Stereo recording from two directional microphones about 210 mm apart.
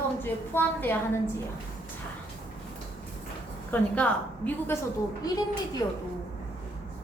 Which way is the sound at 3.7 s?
10° left (ahead or behind).